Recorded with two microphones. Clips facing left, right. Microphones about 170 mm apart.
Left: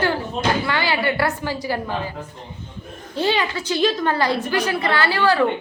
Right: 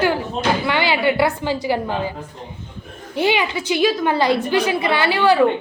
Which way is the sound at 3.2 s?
15° right (ahead or behind).